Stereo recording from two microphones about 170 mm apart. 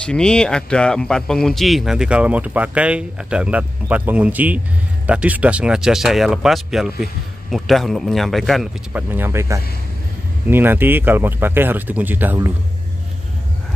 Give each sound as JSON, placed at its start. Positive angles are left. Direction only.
{"t": 0.0, "sound": "speech", "side_deg": 5}
{"t": 9.1, "sound": "speech", "side_deg": -15}